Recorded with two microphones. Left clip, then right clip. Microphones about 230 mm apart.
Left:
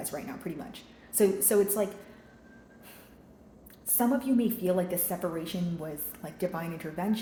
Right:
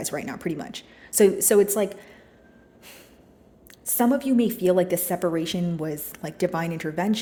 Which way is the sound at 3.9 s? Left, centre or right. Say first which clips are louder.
Right 6 dB; right.